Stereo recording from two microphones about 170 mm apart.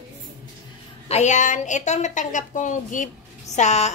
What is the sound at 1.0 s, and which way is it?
A woman's voice, 40° left (ahead or behind).